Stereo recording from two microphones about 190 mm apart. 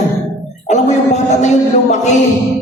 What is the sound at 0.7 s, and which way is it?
Music, 40° left (ahead or behind).